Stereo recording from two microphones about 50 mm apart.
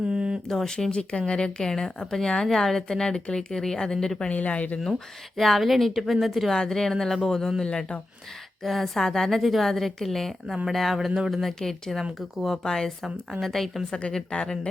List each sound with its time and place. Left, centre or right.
0.0 s a sound: right
0.4 s speech: centre
4.3 s speech: left
5.4 s a woman's voice: centre
7.6 s speech: centre
8.6 s a woman's voice: centre